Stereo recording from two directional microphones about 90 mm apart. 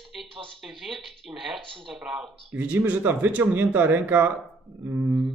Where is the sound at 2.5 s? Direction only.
20° right (ahead or behind).